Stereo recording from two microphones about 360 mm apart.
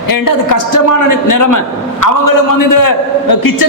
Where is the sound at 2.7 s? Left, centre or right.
Left.